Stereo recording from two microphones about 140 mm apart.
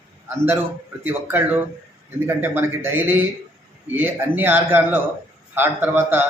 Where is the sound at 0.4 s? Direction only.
15° right (ahead or behind).